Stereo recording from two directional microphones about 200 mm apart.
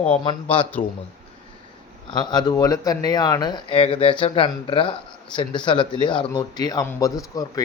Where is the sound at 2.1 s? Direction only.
20° left (ahead or behind).